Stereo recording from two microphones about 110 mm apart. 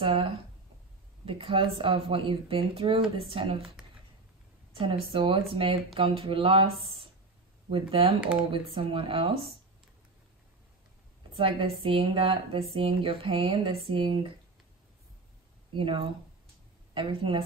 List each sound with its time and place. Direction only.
0.0 s speech: 55° right (ahead or behind)
4.7 s speech: 55° right (ahead or behind)
11.3 s speech: 60° right (ahead or behind)
15.7 s speech: 55° right (ahead or behind)